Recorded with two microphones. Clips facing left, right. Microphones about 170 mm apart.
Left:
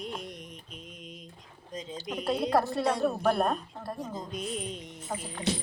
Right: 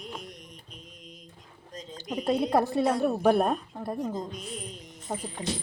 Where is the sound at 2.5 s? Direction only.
15° right (ahead or behind).